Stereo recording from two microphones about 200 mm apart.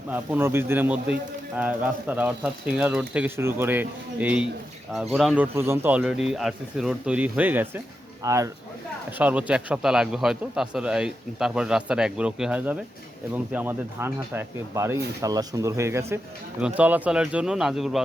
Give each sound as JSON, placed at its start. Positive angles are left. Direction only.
{"t": 0.1, "sound": "a man's voice", "side_deg": -10}